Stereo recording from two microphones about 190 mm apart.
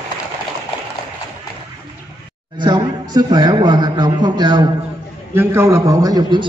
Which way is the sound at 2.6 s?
20° right (ahead or behind).